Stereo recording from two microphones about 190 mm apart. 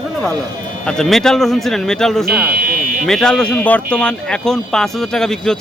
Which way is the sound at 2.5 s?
50° right (ahead or behind).